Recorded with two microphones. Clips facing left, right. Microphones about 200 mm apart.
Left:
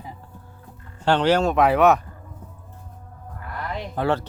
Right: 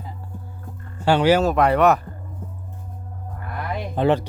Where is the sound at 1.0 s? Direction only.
10° right (ahead or behind).